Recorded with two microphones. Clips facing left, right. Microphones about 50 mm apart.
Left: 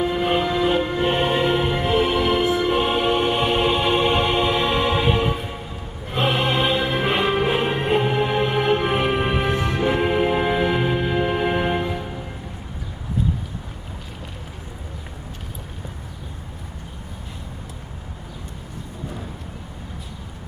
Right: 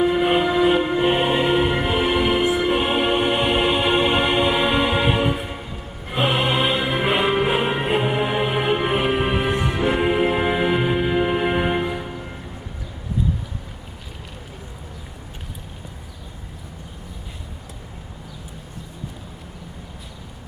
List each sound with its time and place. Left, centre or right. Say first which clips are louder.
0.0 s music: right 3 dB; centre